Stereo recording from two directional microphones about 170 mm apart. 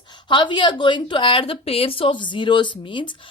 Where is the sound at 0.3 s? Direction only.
25° left (ahead or behind).